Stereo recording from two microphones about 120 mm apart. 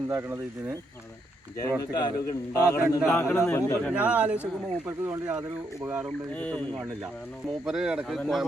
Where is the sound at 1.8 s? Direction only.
30° left (ahead or behind).